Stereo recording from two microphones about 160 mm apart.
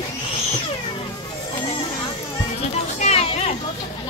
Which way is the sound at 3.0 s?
40° left (ahead or behind).